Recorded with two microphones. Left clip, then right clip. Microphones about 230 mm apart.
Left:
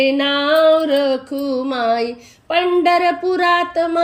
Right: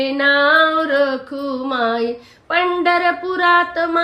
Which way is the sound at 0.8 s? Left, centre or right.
Left.